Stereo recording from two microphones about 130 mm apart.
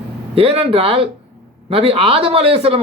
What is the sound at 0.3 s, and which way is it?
Speech, 45° right (ahead or behind).